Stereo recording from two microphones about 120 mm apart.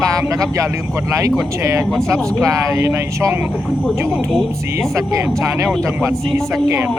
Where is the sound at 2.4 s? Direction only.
25° right (ahead or behind).